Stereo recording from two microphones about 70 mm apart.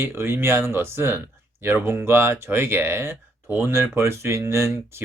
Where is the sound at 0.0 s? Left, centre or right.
Right.